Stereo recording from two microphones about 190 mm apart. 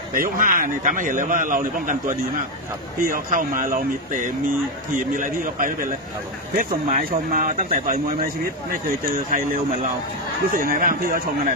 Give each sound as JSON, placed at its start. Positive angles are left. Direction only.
{"t": 0.1, "sound": "a man's voice", "side_deg": -45}